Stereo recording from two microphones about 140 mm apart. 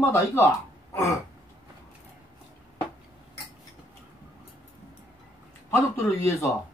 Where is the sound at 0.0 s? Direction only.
20° left (ahead or behind).